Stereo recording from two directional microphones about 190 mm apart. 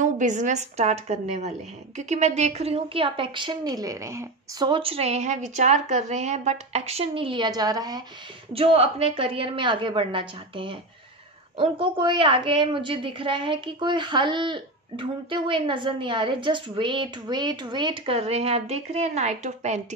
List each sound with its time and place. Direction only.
0.0 s a woman's voice: 40° right (ahead or behind); by 8.0 s 20° right (ahead or behind)
8.5 s a woman's voice: 30° right (ahead or behind)